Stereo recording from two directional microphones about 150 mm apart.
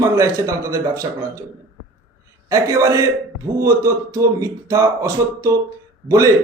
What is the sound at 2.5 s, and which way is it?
A man's voice, 25° right (ahead or behind).